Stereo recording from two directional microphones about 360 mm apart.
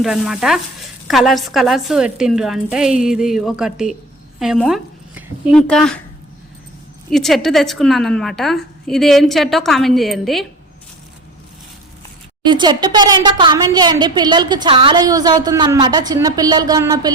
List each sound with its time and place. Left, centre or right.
0.0 s a woman's voice: centre
7.1 s a woman's voice: centre
12.5 s a woman's voice: centre